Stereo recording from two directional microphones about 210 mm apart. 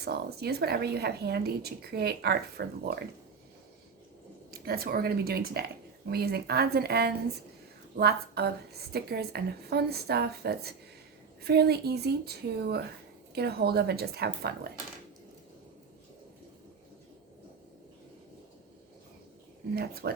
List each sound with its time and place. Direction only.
0.0 s speech: 50° right (ahead or behind)
4.5 s speech: 45° right (ahead or behind)
19.7 s speech: 50° right (ahead or behind)